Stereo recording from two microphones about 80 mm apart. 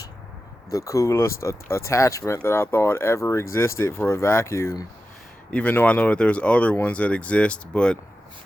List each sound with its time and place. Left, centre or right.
0.7 s speech: left
5.5 s speech: centre